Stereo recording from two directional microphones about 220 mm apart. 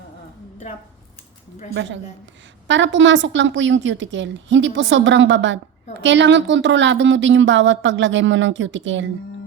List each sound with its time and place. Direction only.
1.7 s speech: 55° right (ahead or behind)